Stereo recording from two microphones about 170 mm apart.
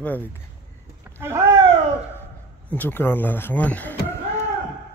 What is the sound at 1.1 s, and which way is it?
Speech, 15° right (ahead or behind).